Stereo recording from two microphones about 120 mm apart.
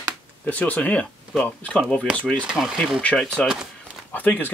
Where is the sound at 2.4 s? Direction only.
5° right (ahead or behind).